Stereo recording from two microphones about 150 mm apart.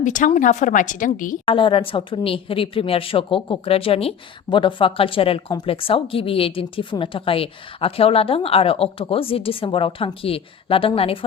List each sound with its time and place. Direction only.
0.0 s speech: 55° left (ahead or behind)
1.5 s speech: 35° left (ahead or behind)